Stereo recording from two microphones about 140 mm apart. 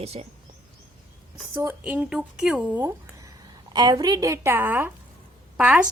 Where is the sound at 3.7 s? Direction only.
30° right (ahead or behind).